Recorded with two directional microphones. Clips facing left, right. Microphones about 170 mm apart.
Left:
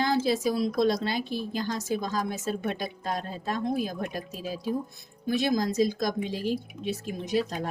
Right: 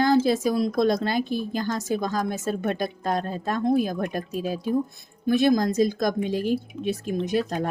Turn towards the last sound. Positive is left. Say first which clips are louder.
# right 4 dB
turn(degrees=-50)  # may be behind; listen again after turning